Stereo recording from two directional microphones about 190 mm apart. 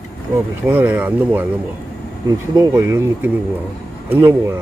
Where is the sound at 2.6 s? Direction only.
15° right (ahead or behind).